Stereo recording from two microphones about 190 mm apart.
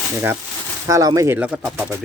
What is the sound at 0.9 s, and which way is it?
Speech, 15° right (ahead or behind).